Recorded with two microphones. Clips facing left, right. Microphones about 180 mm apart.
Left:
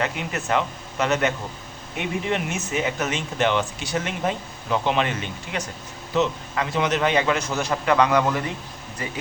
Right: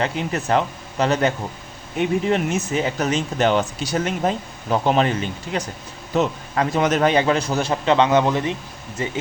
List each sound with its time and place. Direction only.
0.0 s speech: 35° right (ahead or behind)
2.3 s speech: 35° right (ahead or behind)